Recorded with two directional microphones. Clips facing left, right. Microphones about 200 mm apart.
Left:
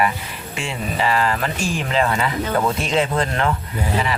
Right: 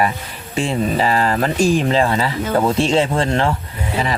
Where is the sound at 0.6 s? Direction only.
35° right (ahead or behind).